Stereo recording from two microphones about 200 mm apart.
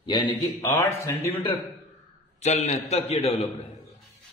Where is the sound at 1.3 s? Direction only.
30° left (ahead or behind).